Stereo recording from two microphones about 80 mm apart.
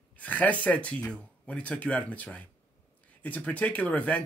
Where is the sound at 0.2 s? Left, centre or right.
Centre.